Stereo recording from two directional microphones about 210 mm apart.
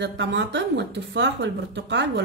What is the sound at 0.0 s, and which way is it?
Speech, 60° right (ahead or behind).